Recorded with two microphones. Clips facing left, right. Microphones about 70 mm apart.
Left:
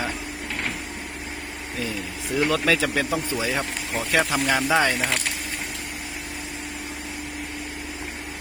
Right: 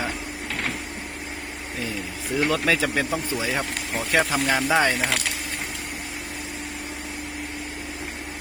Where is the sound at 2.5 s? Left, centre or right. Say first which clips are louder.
Left 1 dB; right.